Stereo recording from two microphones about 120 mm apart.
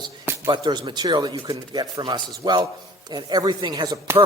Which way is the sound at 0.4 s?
40° right (ahead or behind).